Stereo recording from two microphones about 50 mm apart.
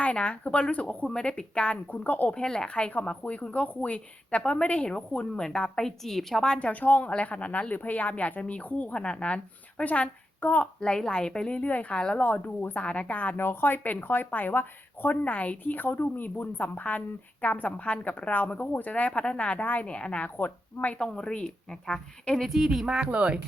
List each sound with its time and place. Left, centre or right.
0.0 s speech: left
1.9 s speech: left
2.3 s speech: centre
6.7 s speech: left
10.8 s speech: centre
11.9 s speech: centre
12.2 s speech: left
13.3 s speech: left
20.3 s a woman's voice: left
21.0 s speech: centre
22.4 s speech: centre; by 23.4 s right